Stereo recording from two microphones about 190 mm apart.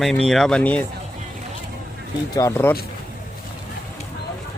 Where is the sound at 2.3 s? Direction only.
15° left (ahead or behind).